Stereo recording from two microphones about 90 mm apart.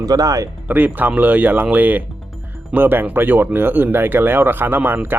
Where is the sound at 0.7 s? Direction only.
20° right (ahead or behind).